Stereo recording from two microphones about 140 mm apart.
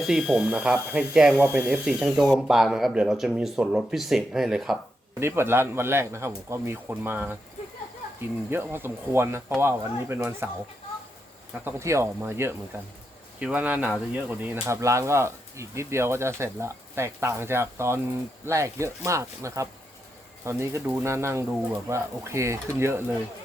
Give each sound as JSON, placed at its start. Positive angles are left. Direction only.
{"t": 0.0, "sound": "speech", "side_deg": -5}
{"t": 5.2, "sound": "speech", "side_deg": -15}
{"t": 8.4, "sound": "speech", "side_deg": -15}
{"t": 11.6, "sound": "speech", "side_deg": -20}